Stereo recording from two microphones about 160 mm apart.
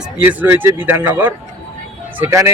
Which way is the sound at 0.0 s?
10° right (ahead or behind).